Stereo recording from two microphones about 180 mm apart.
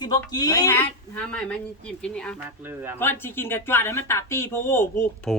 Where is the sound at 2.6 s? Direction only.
10° right (ahead or behind).